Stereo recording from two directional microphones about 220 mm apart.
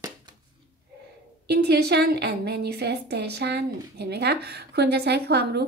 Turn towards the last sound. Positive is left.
turn(degrees=-50)  # may be behind; listen again after turning